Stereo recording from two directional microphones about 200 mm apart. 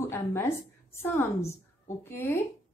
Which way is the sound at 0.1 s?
10° left (ahead or behind).